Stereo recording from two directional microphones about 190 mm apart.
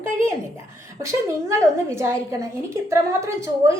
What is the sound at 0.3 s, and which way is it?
A woman's voice, 15° right (ahead or behind).